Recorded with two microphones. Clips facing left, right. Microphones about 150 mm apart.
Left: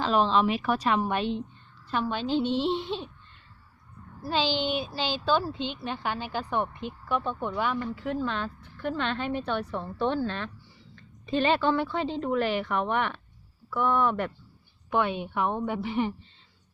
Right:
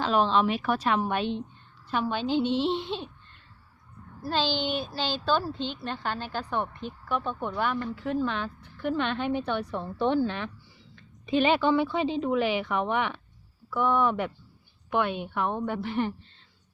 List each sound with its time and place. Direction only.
0.0 s speech: centre (ahead or behind)
4.3 s a woman's voice: 5° left (ahead or behind)